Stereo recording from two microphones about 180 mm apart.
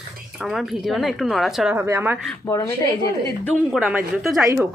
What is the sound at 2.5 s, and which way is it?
A woman's voice, 20° left (ahead or behind).